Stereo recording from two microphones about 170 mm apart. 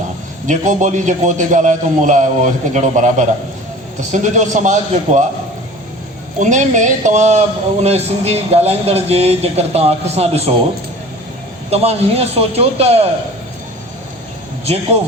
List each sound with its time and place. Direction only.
0.4 s a man's voice: 45° right (ahead or behind)
6.4 s speech: 45° right (ahead or behind)
11.7 s speech: 35° right (ahead or behind)